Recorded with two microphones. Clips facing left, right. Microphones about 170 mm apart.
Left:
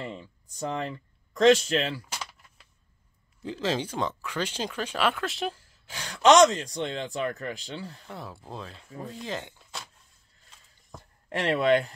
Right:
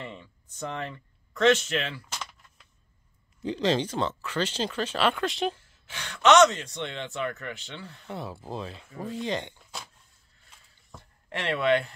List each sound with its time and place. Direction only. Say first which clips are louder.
0.0 s speech: left 3 dB; 35° left (ahead or behind)
2.0 s keys jangling: left 1 dB; 10° left (ahead or behind)
3.4 s speech: right 3 dB; 5° left (ahead or behind)
5.6 s speech: left 1 dB; 40° left (ahead or behind)
8.1 s speech: right 9 dB; centre (ahead or behind)
11.2 s speech: left 2 dB; 40° left (ahead or behind)